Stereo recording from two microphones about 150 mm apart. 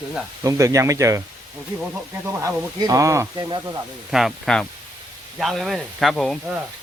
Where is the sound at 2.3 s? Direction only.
15° right (ahead or behind).